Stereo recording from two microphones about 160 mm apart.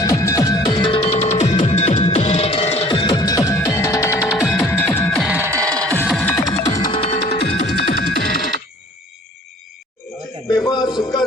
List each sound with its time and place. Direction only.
0.0 s music: 20° left (ahead or behind)
5.2 s music: 10° right (ahead or behind)
5.5 s music: 20° right (ahead or behind)
6.1 s music: 5° left (ahead or behind)
6.3 s music: 25° left (ahead or behind)
6.9 s music: 35° left (ahead or behind)
7.9 s music: 70° left (ahead or behind)
10.7 s a sound: 25° left (ahead or behind)